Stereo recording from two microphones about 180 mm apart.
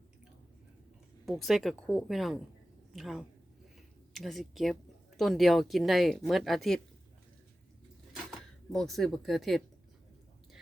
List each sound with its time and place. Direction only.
1.2 s speech: centre (ahead or behind)
8.1 s speech: centre (ahead or behind)